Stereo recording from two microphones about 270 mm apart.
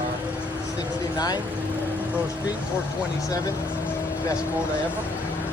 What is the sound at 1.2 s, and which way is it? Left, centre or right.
Speech, centre.